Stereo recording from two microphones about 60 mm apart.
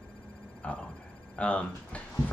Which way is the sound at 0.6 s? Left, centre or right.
Centre.